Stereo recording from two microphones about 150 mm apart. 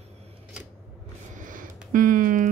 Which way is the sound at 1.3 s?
60° right (ahead or behind).